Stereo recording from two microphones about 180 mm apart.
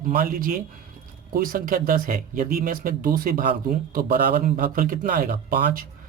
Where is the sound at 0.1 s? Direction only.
50° right (ahead or behind).